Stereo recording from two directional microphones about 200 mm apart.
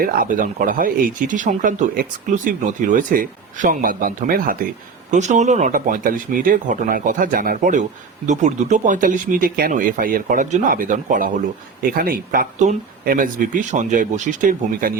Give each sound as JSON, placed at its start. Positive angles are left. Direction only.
{"t": 0.0, "sound": "speech", "side_deg": -45}